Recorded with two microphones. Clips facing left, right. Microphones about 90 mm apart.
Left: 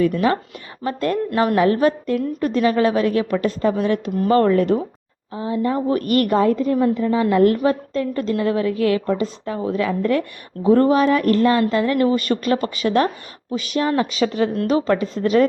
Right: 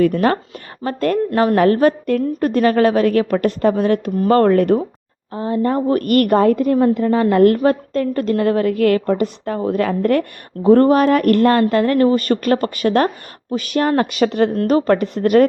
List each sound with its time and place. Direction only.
0.0 s a woman's voice: 50° right (ahead or behind)
1.3 s a woman's voice: 35° right (ahead or behind); by 4.8 s 55° right (ahead or behind)
5.3 s a woman's voice: 45° right (ahead or behind)
7.0 s a woman's voice: 45° right (ahead or behind)
11.9 s a woman's voice: 40° right (ahead or behind); by 14.5 s 60° right (ahead or behind)
14.5 s speech: 45° right (ahead or behind)